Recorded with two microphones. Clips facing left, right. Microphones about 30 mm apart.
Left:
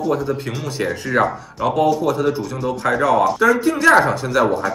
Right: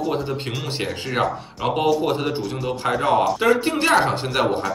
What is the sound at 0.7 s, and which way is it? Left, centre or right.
A man's voice, right.